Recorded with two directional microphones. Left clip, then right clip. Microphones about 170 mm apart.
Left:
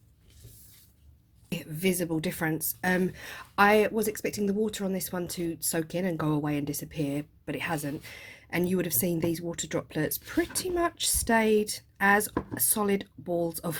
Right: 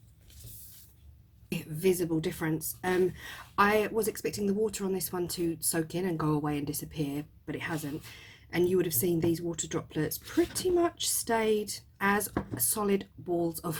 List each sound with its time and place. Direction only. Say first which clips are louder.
1.5 s a woman's voice: right 2 dB; 35° left (ahead or behind)